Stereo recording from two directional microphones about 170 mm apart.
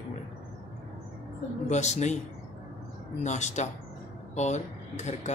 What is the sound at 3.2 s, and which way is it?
Speech, 45° left (ahead or behind).